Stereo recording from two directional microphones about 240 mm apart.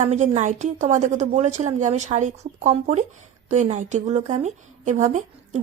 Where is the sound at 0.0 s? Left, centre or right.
Right.